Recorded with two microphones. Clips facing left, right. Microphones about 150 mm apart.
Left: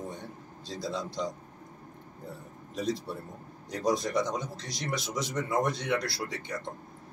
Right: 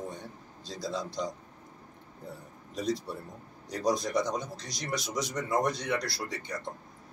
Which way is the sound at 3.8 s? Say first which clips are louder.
Even; 5° left (ahead or behind).